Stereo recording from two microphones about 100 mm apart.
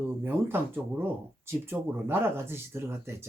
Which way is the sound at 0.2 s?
20° right (ahead or behind).